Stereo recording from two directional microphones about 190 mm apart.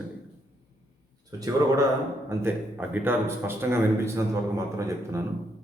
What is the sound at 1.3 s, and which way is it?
A man's voice, 20° right (ahead or behind).